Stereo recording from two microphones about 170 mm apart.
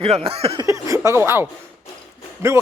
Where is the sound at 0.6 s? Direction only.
20° right (ahead or behind).